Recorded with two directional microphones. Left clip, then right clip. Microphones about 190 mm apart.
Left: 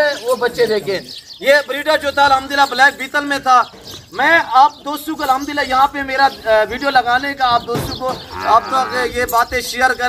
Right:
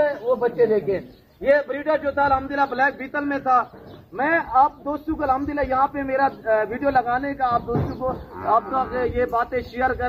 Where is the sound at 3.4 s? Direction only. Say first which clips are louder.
Left 7 dB; 20° left (ahead or behind).